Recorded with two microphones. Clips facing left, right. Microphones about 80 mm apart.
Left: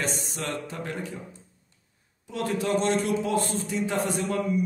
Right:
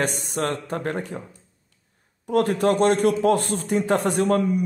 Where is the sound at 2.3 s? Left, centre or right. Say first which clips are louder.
Right 7 dB; right.